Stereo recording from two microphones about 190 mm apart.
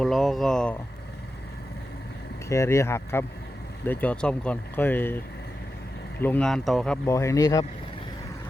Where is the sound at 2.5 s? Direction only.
15° left (ahead or behind).